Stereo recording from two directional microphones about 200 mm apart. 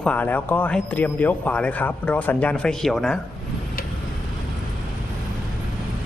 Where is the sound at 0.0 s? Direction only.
5° left (ahead or behind).